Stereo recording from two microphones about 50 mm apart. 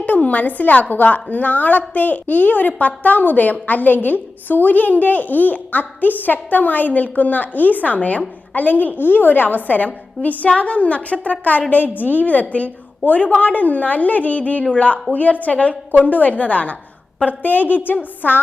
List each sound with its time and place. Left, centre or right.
0.0 s a woman's voice: left